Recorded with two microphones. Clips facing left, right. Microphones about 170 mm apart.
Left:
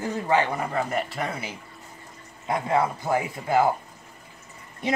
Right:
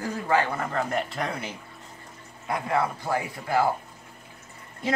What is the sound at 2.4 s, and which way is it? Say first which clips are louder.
A man's voice: left 2 dB; 20° left (ahead or behind).